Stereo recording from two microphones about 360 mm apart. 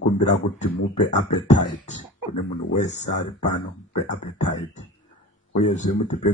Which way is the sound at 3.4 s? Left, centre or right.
Left.